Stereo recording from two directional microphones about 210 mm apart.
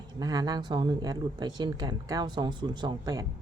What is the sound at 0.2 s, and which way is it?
A woman's voice, 20° right (ahead or behind).